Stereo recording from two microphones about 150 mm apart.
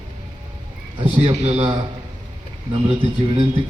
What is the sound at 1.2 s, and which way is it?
Speech, 40° right (ahead or behind).